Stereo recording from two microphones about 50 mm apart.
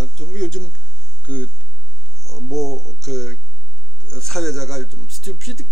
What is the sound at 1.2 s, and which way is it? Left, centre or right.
Speech, left.